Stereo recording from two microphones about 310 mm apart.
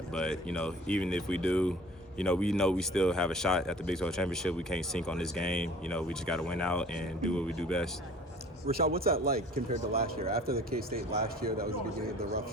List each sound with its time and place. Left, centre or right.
0.1 s speech: centre
8.7 s a man's voice: right